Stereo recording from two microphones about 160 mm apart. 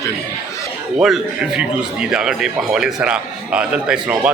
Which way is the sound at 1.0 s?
5° right (ahead or behind).